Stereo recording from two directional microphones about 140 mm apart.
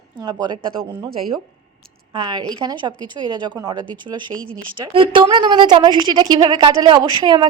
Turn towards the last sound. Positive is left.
turn(degrees=-35)  # may be behind; listen again after turning